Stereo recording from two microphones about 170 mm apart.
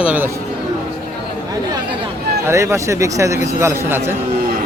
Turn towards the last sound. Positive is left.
turn(degrees=-15)  # may be behind; listen again after turning